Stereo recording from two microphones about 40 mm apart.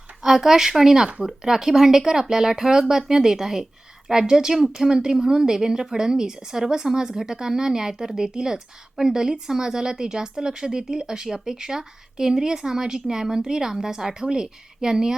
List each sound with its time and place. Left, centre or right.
0.2 s a woman's voice: centre